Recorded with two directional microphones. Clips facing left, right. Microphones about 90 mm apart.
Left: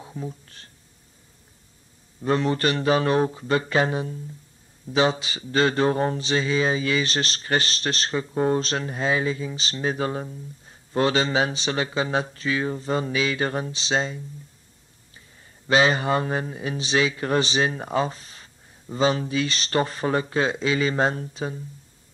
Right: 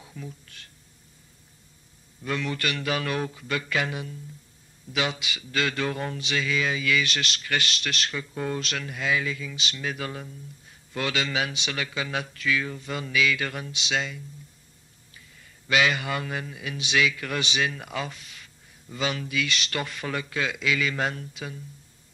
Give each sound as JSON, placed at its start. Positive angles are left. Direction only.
{"t": 0.0, "sound": "speech", "side_deg": 30}
{"t": 2.2, "sound": "mantra", "side_deg": 35}